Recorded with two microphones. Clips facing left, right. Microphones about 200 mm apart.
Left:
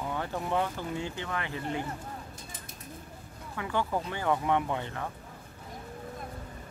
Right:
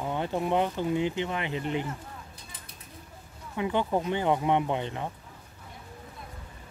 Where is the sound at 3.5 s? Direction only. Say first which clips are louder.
Right 4 dB; 20° right (ahead or behind).